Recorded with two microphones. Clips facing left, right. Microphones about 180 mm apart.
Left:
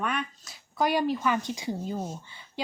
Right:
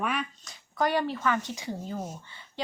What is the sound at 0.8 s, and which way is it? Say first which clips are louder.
Speech: left 2 dB; 10° left (ahead or behind).